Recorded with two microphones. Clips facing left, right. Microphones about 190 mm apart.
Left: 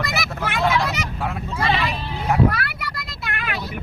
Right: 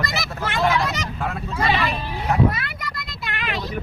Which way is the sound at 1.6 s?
Centre (ahead or behind).